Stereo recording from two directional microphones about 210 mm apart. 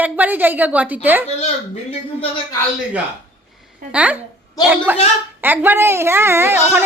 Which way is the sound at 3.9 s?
5° right (ahead or behind).